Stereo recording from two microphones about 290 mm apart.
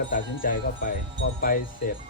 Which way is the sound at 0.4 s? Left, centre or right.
Left.